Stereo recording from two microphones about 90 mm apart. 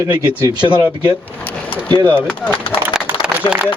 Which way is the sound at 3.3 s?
20° right (ahead or behind).